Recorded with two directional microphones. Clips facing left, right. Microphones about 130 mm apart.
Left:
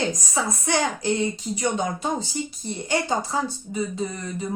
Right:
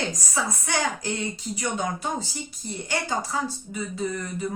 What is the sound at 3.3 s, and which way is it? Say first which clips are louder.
Speech: left 3 dB; 25° left (ahead or behind).